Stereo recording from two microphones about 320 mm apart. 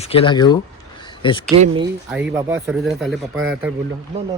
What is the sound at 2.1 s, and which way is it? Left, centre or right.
Speech, centre.